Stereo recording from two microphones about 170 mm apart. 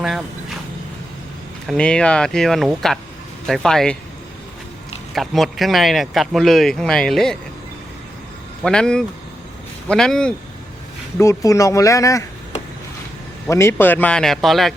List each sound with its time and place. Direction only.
0.0 s speech: 5° right (ahead or behind)
1.6 s speech: 5° left (ahead or behind)
5.1 s speech: centre (ahead or behind)
8.6 s speech: 5° left (ahead or behind)
11.2 s speech: 20° left (ahead or behind)
13.5 s speech: 15° left (ahead or behind)